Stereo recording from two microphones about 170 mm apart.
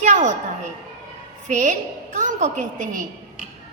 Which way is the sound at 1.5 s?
45° right (ahead or behind).